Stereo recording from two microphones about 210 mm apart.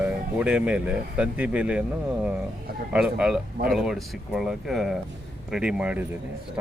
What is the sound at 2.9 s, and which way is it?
Speech, 5° right (ahead or behind).